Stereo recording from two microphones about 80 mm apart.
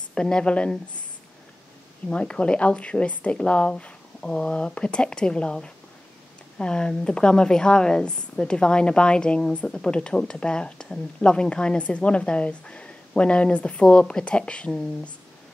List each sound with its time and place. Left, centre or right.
0.1 s a woman's voice: centre
2.0 s a woman's voice: centre